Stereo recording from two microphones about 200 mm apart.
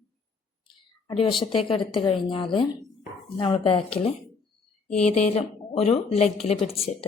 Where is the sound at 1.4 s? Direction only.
25° left (ahead or behind).